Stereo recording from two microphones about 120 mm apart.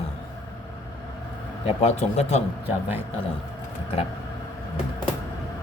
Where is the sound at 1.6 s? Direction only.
65° left (ahead or behind).